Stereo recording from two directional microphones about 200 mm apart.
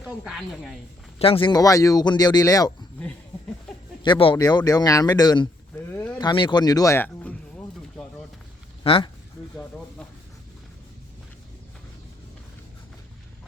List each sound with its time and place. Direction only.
0.0 s speech: centre (ahead or behind)
1.2 s speech: 25° left (ahead or behind)
4.0 s speech: 25° left (ahead or behind)
6.1 s a sound: 20° left (ahead or behind); by 8.0 s 5° left (ahead or behind)
8.8 s speech: 25° left (ahead or behind)